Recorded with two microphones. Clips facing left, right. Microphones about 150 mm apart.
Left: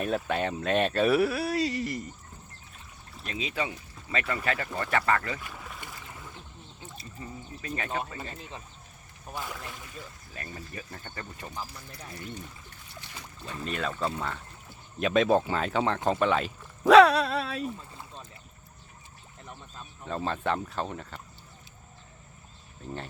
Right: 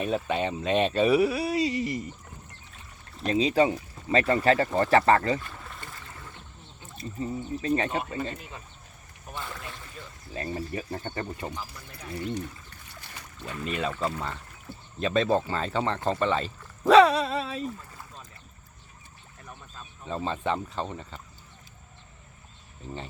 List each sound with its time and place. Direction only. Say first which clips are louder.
0.0 s speech: right 1 dB; centre (ahead or behind)
3.2 s speech: right 11 dB; 35° right (ahead or behind)
5.4 s boat: even; 10° left (ahead or behind)
7.2 s speech: right 11 dB; 30° right (ahead or behind)
8.4 s speech: left 1 dB; 30° left (ahead or behind)
9.3 s speech: even; 10° left (ahead or behind)
10.3 s speech: right 9 dB; 25° right (ahead or behind)
13.4 s speech: right 2 dB; 30° left (ahead or behind)
13.7 s speech: right 2 dB; centre (ahead or behind)
14.9 s speech: left 1 dB; 10° left (ahead or behind)
17.7 s boat: even; 25° left (ahead or behind)
20.1 s speech: right 1 dB; centre (ahead or behind)